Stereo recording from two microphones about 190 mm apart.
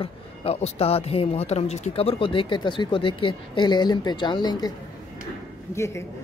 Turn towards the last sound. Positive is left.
turn(degrees=15)  # may be behind; listen again after turning